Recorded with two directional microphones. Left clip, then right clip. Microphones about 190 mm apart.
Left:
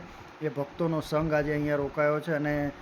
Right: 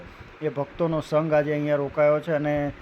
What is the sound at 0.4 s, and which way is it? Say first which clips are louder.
Speech: right 4 dB; 15° right (ahead or behind).